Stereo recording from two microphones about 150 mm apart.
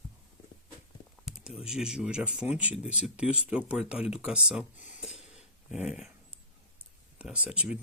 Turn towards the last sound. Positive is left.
turn(degrees=-5)  # may be behind; listen again after turning